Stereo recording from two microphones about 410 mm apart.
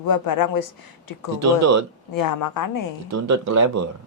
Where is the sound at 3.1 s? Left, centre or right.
Right.